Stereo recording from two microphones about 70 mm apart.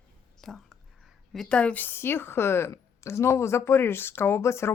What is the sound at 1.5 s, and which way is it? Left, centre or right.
Speech, centre.